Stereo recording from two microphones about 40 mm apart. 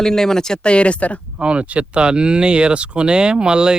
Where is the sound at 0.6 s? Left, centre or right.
Left.